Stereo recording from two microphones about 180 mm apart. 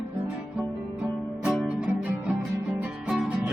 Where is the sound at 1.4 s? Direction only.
5° right (ahead or behind).